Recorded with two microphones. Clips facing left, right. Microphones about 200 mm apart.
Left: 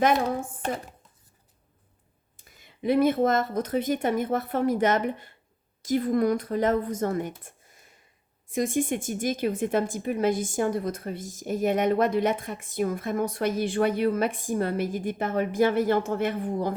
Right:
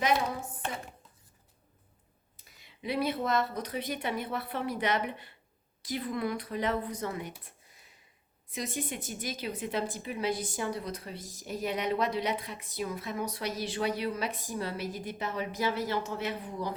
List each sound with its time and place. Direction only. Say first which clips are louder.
0.0 s speech: left 6 dB; 50° left (ahead or behind)
2.3 s speech: left 5 dB; 50° left (ahead or behind)